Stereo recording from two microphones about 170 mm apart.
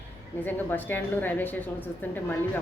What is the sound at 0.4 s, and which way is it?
A woman's voice, 10° left (ahead or behind).